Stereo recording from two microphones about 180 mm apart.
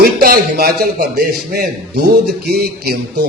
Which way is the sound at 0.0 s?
60° right (ahead or behind).